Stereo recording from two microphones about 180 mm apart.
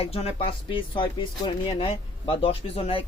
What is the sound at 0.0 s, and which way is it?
Speech, 35° left (ahead or behind).